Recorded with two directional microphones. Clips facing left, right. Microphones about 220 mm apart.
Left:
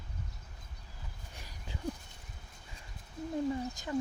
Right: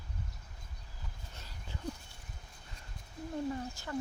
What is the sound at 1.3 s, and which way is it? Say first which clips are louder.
Dog: left 2 dB; 15° left (ahead or behind).